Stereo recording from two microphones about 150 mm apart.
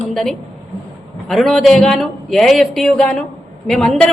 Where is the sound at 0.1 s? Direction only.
Centre (ahead or behind).